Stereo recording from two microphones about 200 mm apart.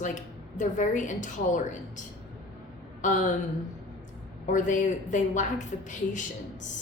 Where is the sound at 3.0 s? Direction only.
40° left (ahead or behind).